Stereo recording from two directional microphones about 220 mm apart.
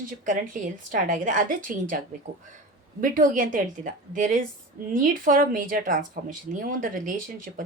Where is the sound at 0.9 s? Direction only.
35° right (ahead or behind).